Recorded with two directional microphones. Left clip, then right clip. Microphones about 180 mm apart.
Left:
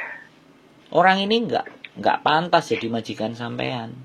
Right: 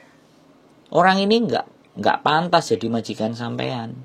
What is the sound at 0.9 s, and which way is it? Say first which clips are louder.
Speech: right 1 dB; 35° right (ahead or behind).